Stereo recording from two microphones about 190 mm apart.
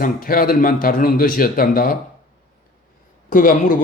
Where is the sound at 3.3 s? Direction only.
45° left (ahead or behind).